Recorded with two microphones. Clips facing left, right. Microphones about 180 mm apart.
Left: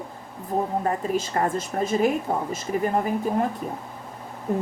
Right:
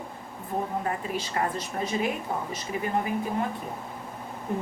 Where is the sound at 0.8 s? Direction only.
45° left (ahead or behind).